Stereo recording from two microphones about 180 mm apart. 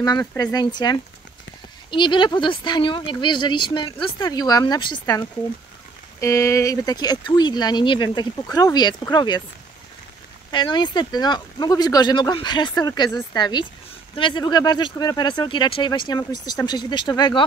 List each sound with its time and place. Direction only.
0.0 s speech: 20° left (ahead or behind)
6.2 s speech: 15° left (ahead or behind)
10.5 s speech: 25° left (ahead or behind)